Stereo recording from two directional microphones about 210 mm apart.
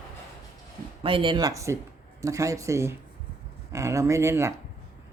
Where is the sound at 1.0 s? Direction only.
25° right (ahead or behind).